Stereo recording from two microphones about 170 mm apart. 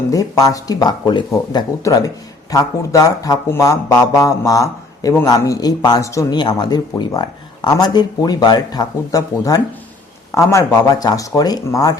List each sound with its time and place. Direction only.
0.1 s speech: 20° left (ahead or behind)